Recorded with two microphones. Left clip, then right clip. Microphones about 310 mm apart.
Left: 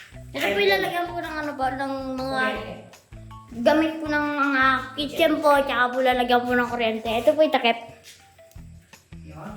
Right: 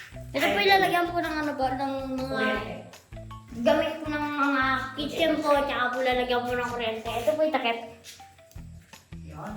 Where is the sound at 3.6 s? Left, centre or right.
Centre.